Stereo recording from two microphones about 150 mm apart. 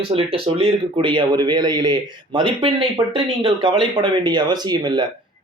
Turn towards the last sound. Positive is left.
turn(degrees=-30)  # may be behind; listen again after turning